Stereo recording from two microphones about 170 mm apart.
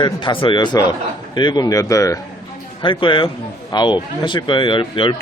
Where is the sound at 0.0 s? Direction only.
30° left (ahead or behind).